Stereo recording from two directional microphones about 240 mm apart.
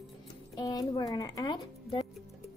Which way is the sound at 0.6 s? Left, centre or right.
Centre.